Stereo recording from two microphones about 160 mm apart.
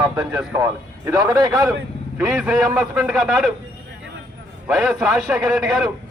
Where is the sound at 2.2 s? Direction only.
5° right (ahead or behind).